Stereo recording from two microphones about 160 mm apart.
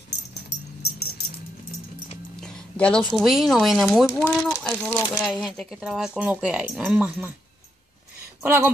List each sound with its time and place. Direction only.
0.3 s dog: 90° left
2.4 s speech: 5° left (ahead or behind)
8.4 s speech: 10° right (ahead or behind)